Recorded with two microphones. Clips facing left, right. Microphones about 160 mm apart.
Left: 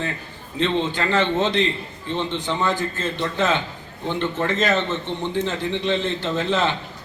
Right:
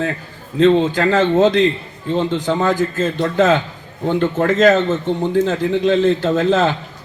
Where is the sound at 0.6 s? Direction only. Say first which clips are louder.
Right 9 dB; 45° right (ahead or behind).